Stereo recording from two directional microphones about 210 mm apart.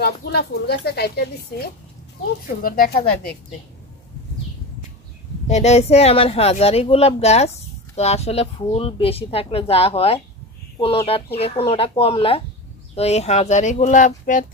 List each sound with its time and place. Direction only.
0.0 s speech: 50° left (ahead or behind)
5.5 s speech: 30° left (ahead or behind)
11.3 s speech: 30° left (ahead or behind)